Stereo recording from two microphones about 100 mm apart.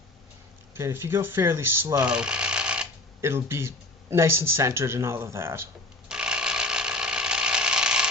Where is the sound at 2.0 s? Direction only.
10° right (ahead or behind).